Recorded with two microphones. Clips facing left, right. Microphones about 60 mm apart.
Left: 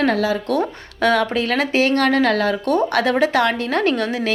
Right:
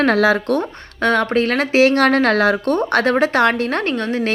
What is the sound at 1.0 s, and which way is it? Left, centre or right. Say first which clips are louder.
Speech: right 1 dB; right.